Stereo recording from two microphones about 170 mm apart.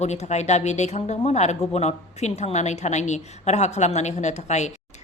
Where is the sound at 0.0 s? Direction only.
40° left (ahead or behind).